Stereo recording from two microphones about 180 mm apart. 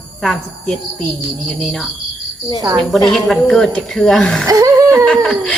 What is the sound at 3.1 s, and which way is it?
A woman's voice, centre (ahead or behind).